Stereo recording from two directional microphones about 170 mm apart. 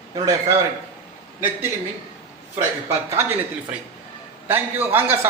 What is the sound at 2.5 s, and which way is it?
Speech, 15° right (ahead or behind).